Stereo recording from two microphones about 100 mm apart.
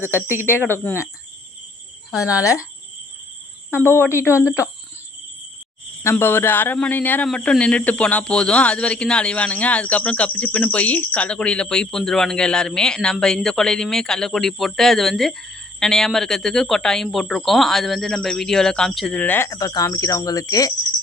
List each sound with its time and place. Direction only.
0.4 s speech: 20° left (ahead or behind)
3.8 s speech: 20° left (ahead or behind)
6.0 s speech: 25° left (ahead or behind); by 19.1 s 5° left (ahead or behind)
19.1 s speech: 15° left (ahead or behind)
19.5 s speech: 35° left (ahead or behind)